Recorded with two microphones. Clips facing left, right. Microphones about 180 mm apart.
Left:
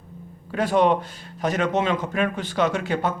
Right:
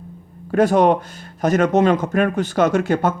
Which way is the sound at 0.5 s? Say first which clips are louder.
Right 5 dB; 45° right (ahead or behind).